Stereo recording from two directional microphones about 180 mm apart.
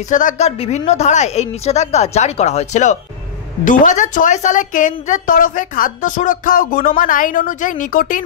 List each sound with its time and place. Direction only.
0.1 s a woman's voice: 45° left (ahead or behind)